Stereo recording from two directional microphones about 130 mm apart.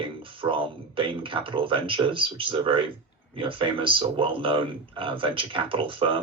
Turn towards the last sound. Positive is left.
turn(degrees=-45)  # may be behind; listen again after turning